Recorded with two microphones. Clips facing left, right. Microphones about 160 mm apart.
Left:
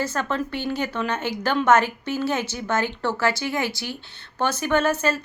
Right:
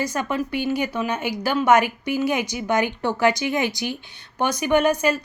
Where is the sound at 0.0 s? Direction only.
15° right (ahead or behind).